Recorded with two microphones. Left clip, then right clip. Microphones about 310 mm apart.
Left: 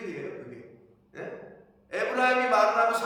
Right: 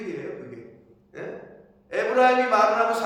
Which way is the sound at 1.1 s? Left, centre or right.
Centre.